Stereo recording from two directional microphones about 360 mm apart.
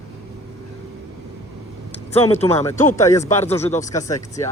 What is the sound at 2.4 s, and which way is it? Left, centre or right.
Speech, centre.